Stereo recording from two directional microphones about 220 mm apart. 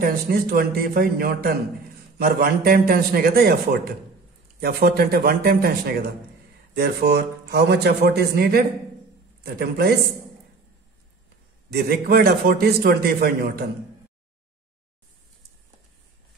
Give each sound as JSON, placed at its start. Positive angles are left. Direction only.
{"t": 0.0, "sound": "a man's voice", "side_deg": -45}
{"t": 11.7, "sound": "a man's voice", "side_deg": -45}